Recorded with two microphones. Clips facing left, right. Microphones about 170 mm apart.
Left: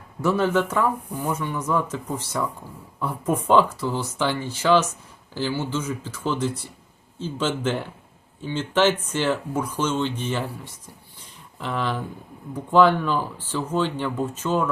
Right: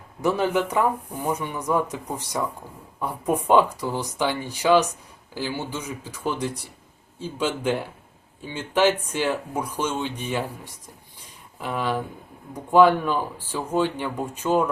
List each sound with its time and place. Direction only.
0.2 s speech: 15° right (ahead or behind)